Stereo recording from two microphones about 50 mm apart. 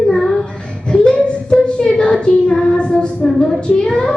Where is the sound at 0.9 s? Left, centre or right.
Left.